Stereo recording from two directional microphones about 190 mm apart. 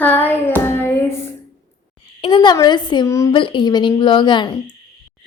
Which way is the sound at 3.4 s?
25° left (ahead or behind).